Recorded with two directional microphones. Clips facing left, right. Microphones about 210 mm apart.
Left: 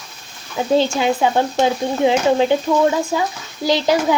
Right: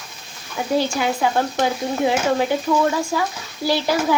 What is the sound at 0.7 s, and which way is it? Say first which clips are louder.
Stir: left 3 dB; 20° left (ahead or behind).